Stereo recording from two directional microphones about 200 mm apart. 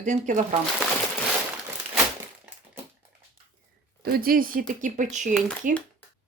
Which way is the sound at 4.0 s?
50° right (ahead or behind).